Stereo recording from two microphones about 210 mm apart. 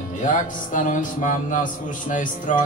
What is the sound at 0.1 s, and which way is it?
Music, 35° left (ahead or behind).